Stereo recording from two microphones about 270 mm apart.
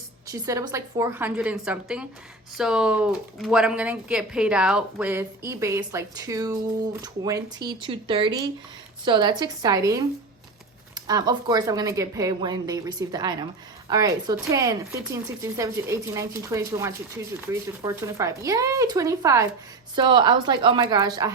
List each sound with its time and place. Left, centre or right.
0.3 s speech: centre
11.0 s speech: centre